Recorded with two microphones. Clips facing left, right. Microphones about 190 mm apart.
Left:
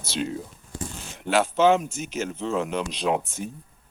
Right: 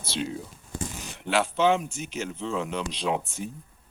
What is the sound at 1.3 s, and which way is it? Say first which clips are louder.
Speech: left 3 dB; 45° left (ahead or behind).